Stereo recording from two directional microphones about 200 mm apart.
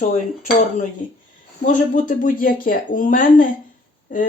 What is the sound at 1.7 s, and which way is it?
Speech, 40° left (ahead or behind).